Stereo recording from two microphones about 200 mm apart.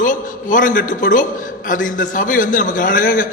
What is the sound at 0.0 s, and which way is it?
A man's voice, 40° left (ahead or behind).